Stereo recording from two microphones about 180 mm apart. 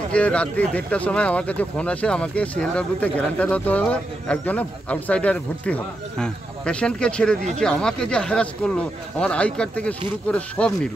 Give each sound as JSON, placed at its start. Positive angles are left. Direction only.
{"t": 0.1, "sound": "speech", "side_deg": 5}